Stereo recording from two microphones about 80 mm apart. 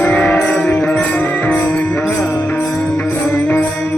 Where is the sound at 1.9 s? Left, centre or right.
Left.